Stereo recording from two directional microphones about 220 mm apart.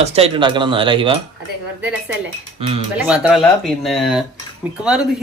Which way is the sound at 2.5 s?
25° right (ahead or behind).